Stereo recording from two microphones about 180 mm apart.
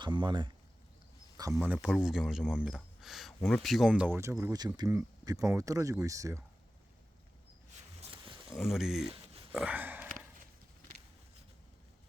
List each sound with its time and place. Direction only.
0.0 s speech: 25° right (ahead or behind)
1.6 s speech: 5° right (ahead or behind)
8.1 s roaring cats: 30° right (ahead or behind)
8.4 s speech: centre (ahead or behind)